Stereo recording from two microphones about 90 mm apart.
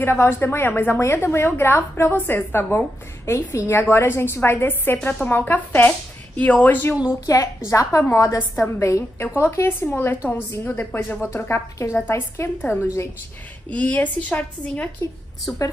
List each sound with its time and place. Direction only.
0.0 s a woman's voice: 25° left (ahead or behind)
7.2 s a woman's voice: 40° left (ahead or behind)
8.5 s a woman's voice: 30° left (ahead or behind)
13.7 s a woman's voice: 15° left (ahead or behind)